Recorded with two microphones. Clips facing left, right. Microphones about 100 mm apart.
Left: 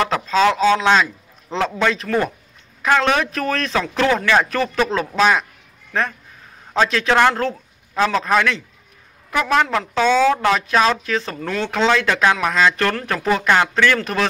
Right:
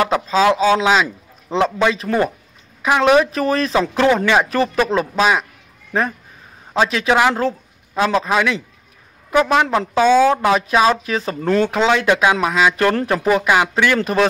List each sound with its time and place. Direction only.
0.1 s speech: 10° right (ahead or behind)
3.7 s speech: 20° right (ahead or behind)
6.7 s a man's voice: 10° right (ahead or behind)
9.3 s a woman's voice: 25° right (ahead or behind)
9.9 s speech: 10° right (ahead or behind)
11.4 s speech: 40° right (ahead or behind)
11.7 s speech: 10° right (ahead or behind)